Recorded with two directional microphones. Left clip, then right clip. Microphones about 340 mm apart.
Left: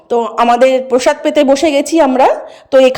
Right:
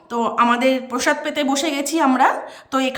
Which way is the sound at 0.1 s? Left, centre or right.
Centre.